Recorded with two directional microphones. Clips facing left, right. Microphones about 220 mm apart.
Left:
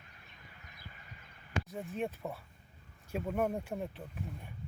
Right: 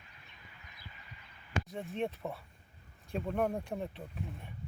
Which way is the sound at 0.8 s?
45° left (ahead or behind).